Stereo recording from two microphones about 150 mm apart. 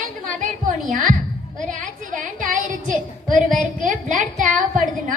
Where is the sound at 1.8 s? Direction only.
65° right (ahead or behind).